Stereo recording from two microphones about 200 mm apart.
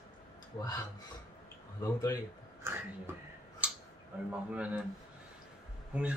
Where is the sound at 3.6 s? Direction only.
5° right (ahead or behind).